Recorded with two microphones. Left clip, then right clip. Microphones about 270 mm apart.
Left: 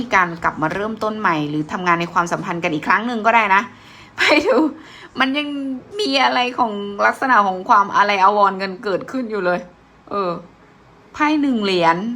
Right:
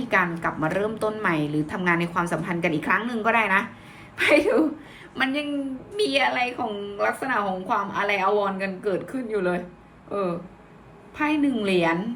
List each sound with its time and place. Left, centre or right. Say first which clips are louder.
0.1 s a woman's voice: left 6 dB; centre